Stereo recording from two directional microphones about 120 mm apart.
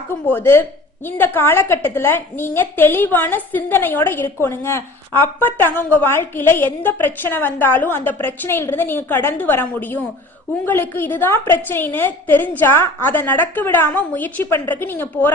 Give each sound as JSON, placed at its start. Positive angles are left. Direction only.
{"t": 0.3, "sound": "a woman's voice", "side_deg": 15}